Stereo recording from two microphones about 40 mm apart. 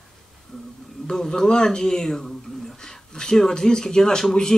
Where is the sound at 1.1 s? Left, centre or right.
Centre.